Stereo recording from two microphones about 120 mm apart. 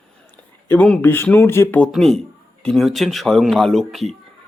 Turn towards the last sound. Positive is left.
turn(degrees=0)  # may be behind; listen again after turning